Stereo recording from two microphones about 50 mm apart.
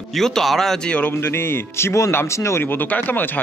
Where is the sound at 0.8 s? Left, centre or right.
Left.